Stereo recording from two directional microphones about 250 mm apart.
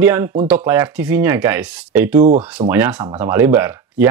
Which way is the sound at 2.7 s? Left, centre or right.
Centre.